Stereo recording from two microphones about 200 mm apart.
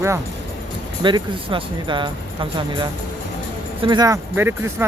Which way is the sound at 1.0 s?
25° right (ahead or behind).